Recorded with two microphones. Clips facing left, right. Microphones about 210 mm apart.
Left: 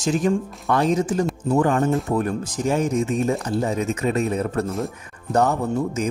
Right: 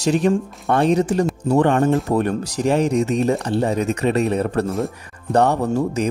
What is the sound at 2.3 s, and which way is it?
Speech, 70° right (ahead or behind).